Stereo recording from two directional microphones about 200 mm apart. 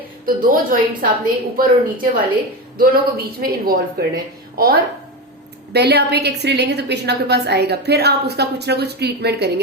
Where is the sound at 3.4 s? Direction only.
45° right (ahead or behind).